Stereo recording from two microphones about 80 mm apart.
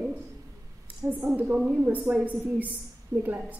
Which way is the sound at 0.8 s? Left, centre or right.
Right.